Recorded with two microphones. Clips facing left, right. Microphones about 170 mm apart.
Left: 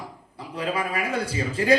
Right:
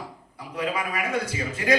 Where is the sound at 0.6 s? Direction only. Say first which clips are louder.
Left 1 dB; 30° left (ahead or behind).